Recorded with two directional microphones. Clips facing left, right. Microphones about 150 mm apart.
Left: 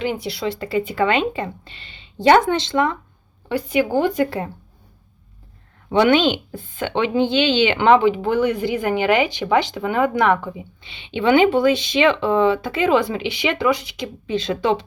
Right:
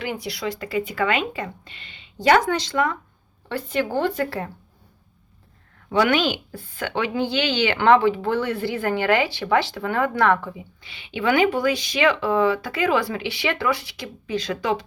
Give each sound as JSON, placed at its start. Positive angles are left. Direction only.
{"t": 0.0, "sound": "a woman's voice", "side_deg": 25}
{"t": 3.5, "sound": "speech", "side_deg": 10}
{"t": 5.9, "sound": "a woman's voice", "side_deg": 25}